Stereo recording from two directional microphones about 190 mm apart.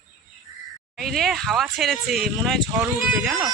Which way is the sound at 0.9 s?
Centre (ahead or behind).